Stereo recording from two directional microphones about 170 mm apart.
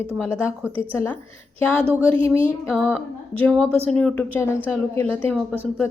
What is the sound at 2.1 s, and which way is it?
Speech, 30° right (ahead or behind).